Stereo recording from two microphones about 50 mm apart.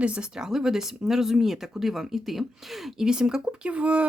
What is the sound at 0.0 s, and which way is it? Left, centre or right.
Speech, right.